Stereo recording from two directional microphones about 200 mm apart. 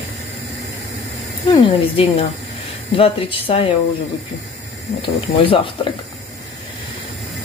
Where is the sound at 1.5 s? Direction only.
30° left (ahead or behind).